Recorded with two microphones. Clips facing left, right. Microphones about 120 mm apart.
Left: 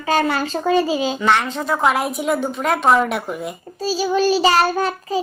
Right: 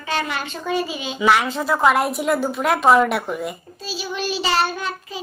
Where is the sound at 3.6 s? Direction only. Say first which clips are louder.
Left 9 dB; 40° left (ahead or behind).